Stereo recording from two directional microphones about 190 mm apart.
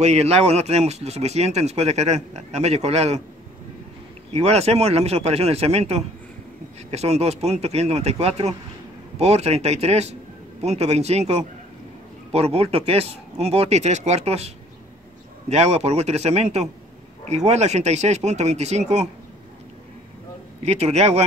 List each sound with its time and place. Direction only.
0.0 s speech: 35° right (ahead or behind)
4.3 s speech: 35° right (ahead or behind)
15.5 s speech: 35° right (ahead or behind)
20.6 s speech: 35° right (ahead or behind)